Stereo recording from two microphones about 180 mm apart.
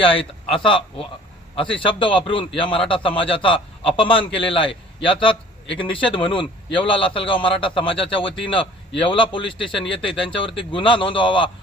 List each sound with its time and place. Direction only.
0.1 s a man's voice: 30° left (ahead or behind)